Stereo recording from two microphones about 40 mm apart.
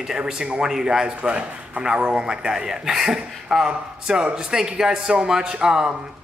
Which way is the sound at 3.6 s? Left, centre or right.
Right.